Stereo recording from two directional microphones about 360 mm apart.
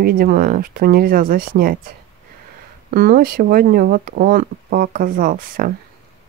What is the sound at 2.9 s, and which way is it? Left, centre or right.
Speech, right.